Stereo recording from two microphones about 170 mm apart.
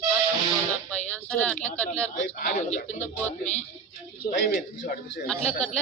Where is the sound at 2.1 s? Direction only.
45° left (ahead or behind).